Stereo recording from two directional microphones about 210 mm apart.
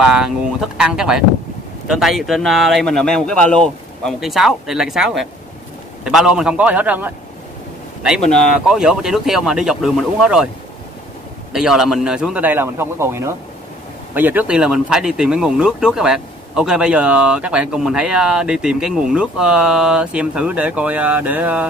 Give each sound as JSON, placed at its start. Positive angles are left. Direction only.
{"t": 0.0, "sound": "speech", "side_deg": -5}
{"t": 8.3, "sound": "speech", "side_deg": 0}
{"t": 11.5, "sound": "speech", "side_deg": 0}